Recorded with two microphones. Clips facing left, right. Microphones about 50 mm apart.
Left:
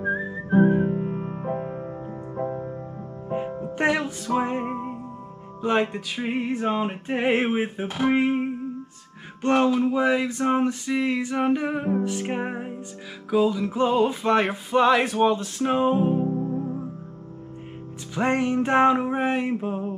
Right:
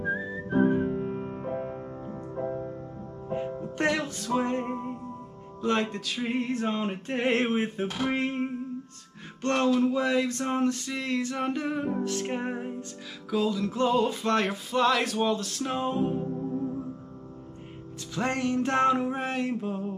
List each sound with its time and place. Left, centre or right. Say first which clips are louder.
0.0 s whistling: left 4 dB; centre
3.3 s music: left 3 dB; centre
5.6 s a sound: left 4 dB; centre
16.2 s music: left 5 dB; centre
18.1 s music: left 5 dB; centre